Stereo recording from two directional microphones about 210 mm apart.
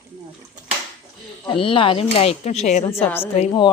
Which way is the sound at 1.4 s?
25° left (ahead or behind).